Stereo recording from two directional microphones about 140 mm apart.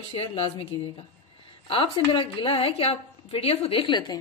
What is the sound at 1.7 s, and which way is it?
A woman's voice, 40° left (ahead or behind).